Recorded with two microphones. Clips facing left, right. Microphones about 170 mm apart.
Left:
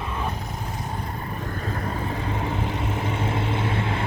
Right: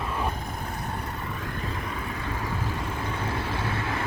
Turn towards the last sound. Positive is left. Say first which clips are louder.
# left 4 dB
turn(degrees=25)  # may be behind; listen again after turning